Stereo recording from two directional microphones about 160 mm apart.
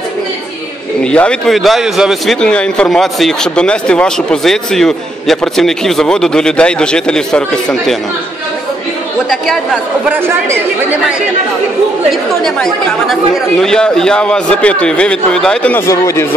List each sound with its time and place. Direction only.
1.0 s a man's voice: 5° left (ahead or behind)
10.1 s speech: 15° right (ahead or behind)
12.1 s a man's voice: centre (ahead or behind)
15.9 s speech: 20° left (ahead or behind)